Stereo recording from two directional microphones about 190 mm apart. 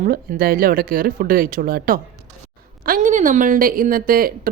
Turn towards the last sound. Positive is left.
turn(degrees=-50)  # may be behind; listen again after turning